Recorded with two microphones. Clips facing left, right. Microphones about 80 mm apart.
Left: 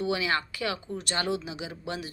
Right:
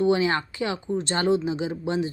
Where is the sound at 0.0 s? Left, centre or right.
Right.